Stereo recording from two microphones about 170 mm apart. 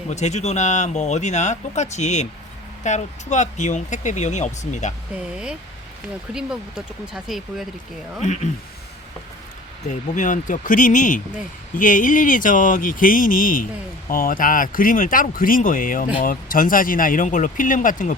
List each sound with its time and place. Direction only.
0.1 s speech: 40° left (ahead or behind)
6.3 s speech: 5° right (ahead or behind)
8.2 s speech: 45° left (ahead or behind)
9.9 s speech: 50° left (ahead or behind)